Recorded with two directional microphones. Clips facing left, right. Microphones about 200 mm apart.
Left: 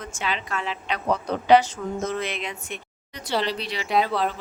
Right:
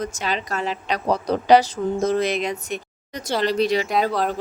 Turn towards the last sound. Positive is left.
turn(degrees=-45)  # may be behind; listen again after turning